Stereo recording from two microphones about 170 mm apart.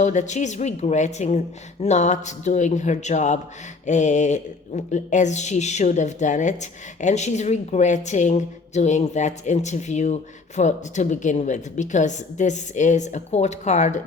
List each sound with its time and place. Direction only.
0.0 s speech: 45° left (ahead or behind)